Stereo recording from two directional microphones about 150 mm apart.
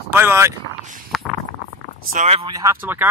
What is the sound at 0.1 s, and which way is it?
Speech, 15° right (ahead or behind).